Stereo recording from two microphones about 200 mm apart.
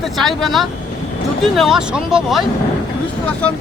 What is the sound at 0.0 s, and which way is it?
Speech, centre (ahead or behind).